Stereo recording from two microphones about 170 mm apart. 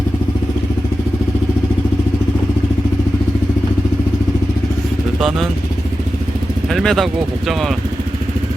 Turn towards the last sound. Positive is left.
turn(degrees=0)  # may be behind; listen again after turning